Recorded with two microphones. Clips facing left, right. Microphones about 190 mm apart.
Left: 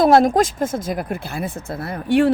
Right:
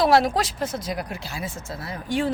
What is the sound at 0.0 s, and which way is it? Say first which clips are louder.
Speech: left 6 dB; 50° left (ahead or behind).